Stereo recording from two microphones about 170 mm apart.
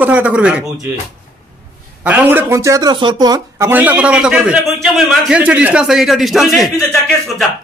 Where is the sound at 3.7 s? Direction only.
10° right (ahead or behind).